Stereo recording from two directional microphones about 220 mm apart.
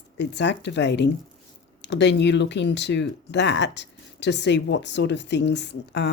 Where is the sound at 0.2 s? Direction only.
50° left (ahead or behind).